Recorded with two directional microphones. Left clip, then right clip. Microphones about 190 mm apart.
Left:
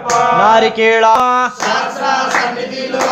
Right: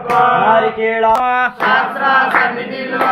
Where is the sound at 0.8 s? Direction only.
90° left.